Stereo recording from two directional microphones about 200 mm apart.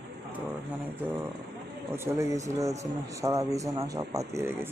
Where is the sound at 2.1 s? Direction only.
15° right (ahead or behind).